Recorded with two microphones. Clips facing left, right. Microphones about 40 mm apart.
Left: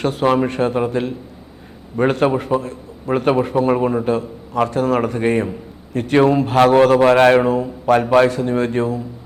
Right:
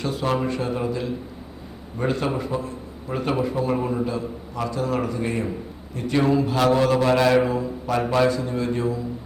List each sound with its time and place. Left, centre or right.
0.0 s a man's voice: left